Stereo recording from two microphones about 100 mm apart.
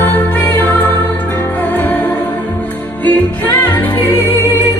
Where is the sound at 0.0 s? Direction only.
20° left (ahead or behind).